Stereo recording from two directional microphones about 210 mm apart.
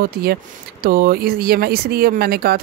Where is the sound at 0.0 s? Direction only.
45° right (ahead or behind).